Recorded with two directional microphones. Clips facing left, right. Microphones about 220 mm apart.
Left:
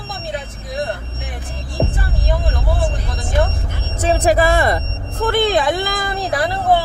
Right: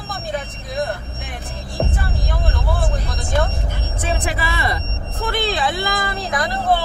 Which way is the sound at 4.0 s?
40° left (ahead or behind).